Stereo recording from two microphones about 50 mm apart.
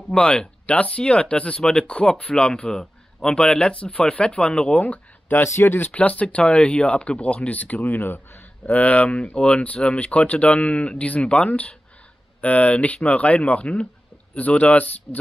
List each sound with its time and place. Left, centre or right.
0.1 s speech: centre
5.5 s speech: left
5.8 s speech: left
8.7 s speech: left